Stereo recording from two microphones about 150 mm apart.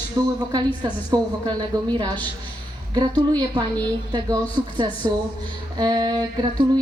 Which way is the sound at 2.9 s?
30° right (ahead or behind).